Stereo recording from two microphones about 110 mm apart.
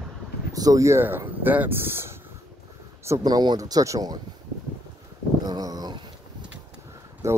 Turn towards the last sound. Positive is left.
turn(degrees=-25)  # may be behind; listen again after turning